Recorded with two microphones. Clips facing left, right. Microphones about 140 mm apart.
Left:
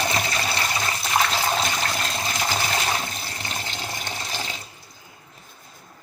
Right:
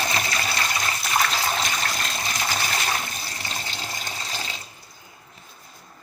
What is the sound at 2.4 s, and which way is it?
Water, 20° left (ahead or behind).